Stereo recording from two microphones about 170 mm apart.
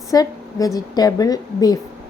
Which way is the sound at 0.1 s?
20° left (ahead or behind).